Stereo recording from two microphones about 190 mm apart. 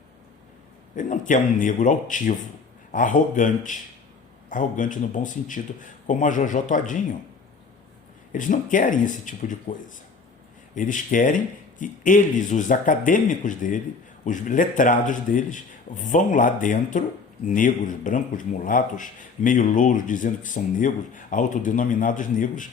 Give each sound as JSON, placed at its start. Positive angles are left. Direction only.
{"t": 0.9, "sound": "a man's voice", "side_deg": 40}
{"t": 8.3, "sound": "a man's voice", "side_deg": 45}